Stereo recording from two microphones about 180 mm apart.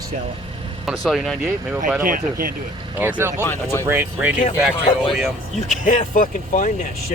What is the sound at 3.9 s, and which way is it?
Speech, 10° right (ahead or behind).